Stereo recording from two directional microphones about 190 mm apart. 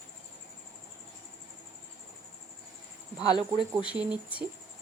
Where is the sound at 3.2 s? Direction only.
25° left (ahead or behind).